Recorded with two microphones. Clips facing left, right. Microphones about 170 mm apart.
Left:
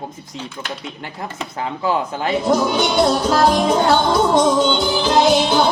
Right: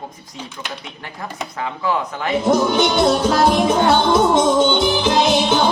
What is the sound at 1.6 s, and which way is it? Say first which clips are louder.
Speech: left 1 dB; 30° left (ahead or behind).